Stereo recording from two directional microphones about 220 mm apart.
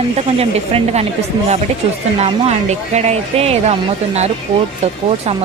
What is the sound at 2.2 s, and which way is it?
Speech, 30° right (ahead or behind).